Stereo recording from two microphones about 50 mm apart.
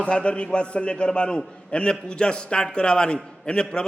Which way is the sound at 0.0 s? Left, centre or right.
Left.